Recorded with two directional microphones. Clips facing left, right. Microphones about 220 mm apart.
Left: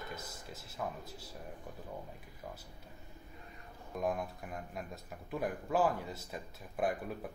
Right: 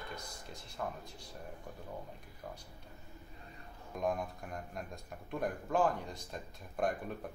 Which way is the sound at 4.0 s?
Centre (ahead or behind).